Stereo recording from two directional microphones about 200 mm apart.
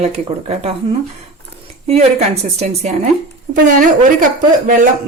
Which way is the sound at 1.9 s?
30° right (ahead or behind).